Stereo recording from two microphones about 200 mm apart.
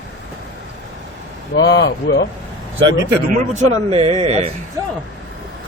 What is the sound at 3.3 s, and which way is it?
A man's voice, 35° right (ahead or behind).